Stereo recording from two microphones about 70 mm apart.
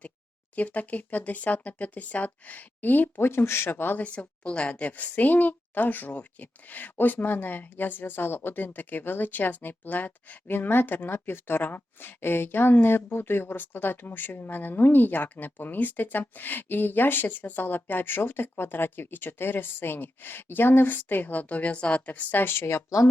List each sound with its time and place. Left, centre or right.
0.5 s speech: left